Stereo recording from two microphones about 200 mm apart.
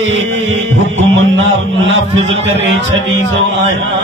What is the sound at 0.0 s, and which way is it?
Music, 75° right (ahead or behind).